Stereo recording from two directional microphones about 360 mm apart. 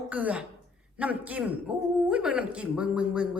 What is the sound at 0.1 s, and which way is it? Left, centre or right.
Speech, centre.